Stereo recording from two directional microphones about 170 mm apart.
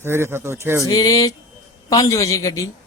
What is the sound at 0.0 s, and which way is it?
Speech, 15° right (ahead or behind).